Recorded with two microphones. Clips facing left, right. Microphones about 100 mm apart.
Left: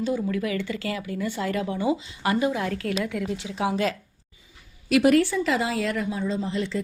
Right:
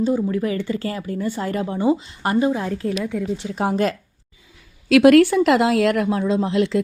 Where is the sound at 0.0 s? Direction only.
35° right (ahead or behind).